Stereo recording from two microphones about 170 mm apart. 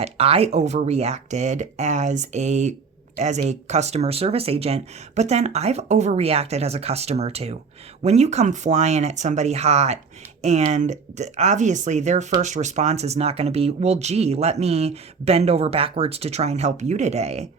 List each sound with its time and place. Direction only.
0.0 s speech: 35° right (ahead or behind)